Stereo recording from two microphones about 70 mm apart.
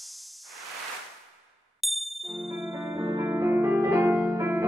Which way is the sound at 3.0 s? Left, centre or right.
Right.